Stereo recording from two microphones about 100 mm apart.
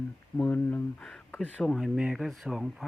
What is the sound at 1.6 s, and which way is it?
Speech, centre (ahead or behind).